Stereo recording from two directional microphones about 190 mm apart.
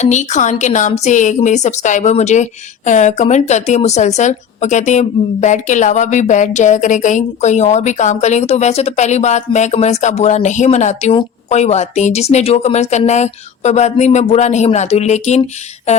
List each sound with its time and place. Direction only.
0.0 s speech: 40° left (ahead or behind)